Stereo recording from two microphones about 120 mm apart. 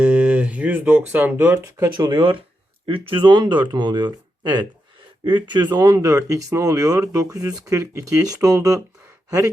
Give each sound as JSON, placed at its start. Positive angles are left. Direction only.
{"t": 0.0, "sound": "guitar", "side_deg": -10}
{"t": 1.8, "sound": "speech", "side_deg": -25}
{"t": 2.1, "sound": "speech", "side_deg": -45}